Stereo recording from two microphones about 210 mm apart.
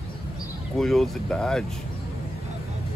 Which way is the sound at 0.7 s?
Centre (ahead or behind).